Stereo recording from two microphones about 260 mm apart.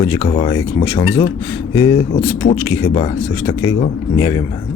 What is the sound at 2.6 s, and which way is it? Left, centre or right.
A man's voice, centre.